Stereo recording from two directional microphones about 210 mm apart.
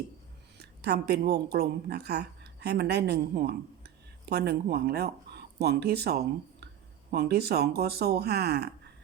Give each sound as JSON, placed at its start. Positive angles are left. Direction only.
{"t": 0.6, "sound": "a woman's voice", "side_deg": -50}